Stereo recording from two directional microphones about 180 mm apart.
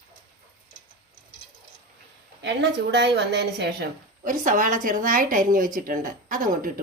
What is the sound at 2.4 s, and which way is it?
A woman's voice, 75° right (ahead or behind).